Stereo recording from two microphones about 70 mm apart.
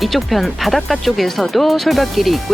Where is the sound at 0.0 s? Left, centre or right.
Centre.